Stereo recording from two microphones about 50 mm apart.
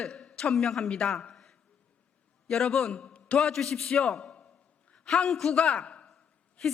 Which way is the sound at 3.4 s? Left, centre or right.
Centre.